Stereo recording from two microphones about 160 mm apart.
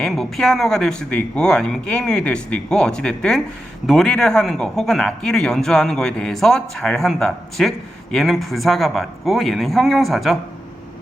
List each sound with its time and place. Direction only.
0.0 s speech: centre (ahead or behind)